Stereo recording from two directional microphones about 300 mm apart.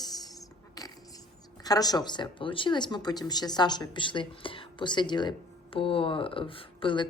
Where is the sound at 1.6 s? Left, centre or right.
Centre.